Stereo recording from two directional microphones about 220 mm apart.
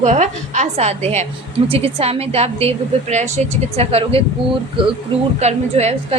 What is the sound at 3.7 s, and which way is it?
A woman's voice, 25° right (ahead or behind).